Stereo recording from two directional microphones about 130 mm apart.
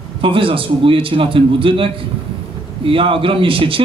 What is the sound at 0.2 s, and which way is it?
A man's voice, 40° right (ahead or behind).